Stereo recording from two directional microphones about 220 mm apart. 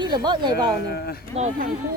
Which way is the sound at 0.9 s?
45° left (ahead or behind).